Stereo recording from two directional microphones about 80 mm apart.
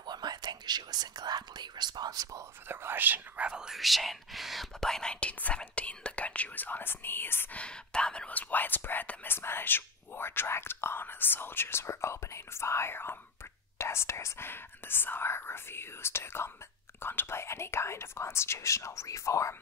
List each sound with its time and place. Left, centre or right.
0.0 s speech: right
2.7 s speech: right; by 7.4 s left
7.5 s speech: centre; by 19.5 s left